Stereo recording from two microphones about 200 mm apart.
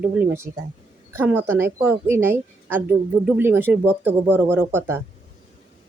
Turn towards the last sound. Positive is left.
turn(degrees=-10)  # may be behind; listen again after turning